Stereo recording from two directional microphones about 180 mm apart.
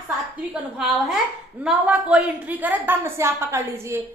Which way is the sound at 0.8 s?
Centre (ahead or behind).